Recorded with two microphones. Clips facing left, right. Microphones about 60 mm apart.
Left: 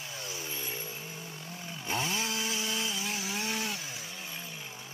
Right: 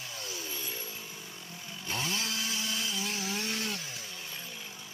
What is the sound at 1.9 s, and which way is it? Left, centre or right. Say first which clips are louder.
Chainsaw: left 2 dB; centre.